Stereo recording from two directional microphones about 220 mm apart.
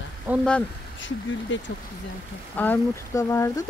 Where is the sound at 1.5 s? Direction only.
55° left (ahead or behind).